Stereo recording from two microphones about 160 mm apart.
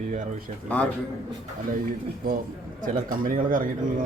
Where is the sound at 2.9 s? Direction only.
60° right (ahead or behind).